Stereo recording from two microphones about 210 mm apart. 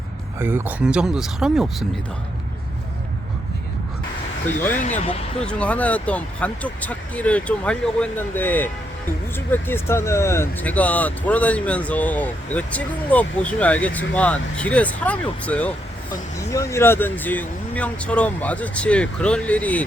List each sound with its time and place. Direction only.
0.3 s speech: 10° right (ahead or behind)
4.7 s speech: 35° left (ahead or behind)
5.4 s speech: 5° left (ahead or behind)